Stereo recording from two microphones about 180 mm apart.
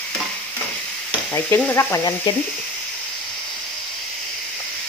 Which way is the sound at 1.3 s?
15° left (ahead or behind).